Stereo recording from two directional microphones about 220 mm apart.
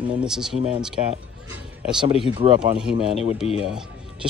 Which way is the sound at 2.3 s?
25° right (ahead or behind).